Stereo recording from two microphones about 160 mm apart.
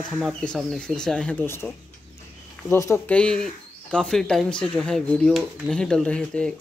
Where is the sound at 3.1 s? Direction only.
5° left (ahead or behind).